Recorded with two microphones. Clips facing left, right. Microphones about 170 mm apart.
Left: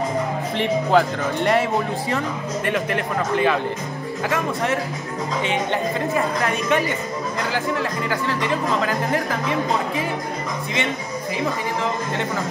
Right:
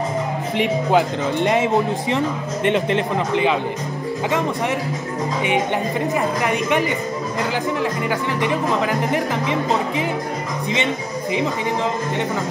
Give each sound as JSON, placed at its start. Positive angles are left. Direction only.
{"t": 0.6, "sound": "speech", "side_deg": -15}
{"t": 6.1, "sound": "speech", "side_deg": -15}